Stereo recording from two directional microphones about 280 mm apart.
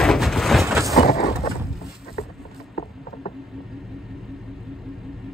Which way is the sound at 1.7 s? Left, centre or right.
Centre.